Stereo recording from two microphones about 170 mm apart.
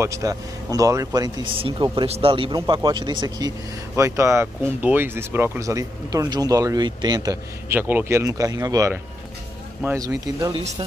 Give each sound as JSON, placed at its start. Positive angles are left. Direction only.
{"t": 0.0, "sound": "speech", "side_deg": -20}